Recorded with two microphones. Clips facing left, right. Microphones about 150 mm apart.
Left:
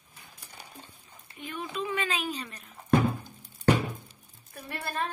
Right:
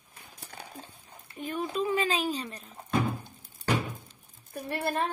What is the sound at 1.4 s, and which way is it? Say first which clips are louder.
Speech: right 4 dB; 40° right (ahead or behind).